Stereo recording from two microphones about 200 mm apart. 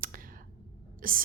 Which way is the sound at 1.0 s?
45° right (ahead or behind).